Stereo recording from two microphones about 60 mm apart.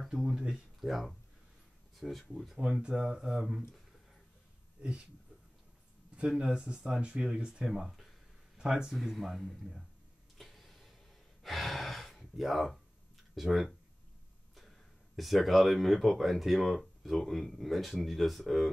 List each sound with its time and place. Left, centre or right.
0.0 s speech: centre
2.6 s speech: centre
6.1 s speech: centre
10.3 s a sound: centre
11.4 s gasp: centre
13.3 s speech: centre
15.1 s speech: centre